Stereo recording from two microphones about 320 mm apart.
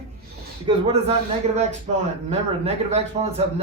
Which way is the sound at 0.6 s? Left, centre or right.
Centre.